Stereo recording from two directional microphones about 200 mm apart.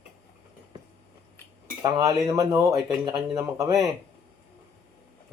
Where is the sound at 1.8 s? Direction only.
20° right (ahead or behind).